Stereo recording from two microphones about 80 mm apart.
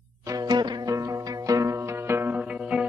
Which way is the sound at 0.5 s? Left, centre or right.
Right.